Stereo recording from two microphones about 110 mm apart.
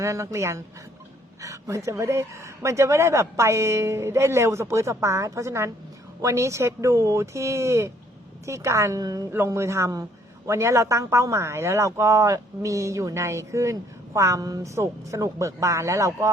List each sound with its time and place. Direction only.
0.0 s a man's voice: 25° right (ahead or behind)
9.3 s a man's voice: 20° right (ahead or behind)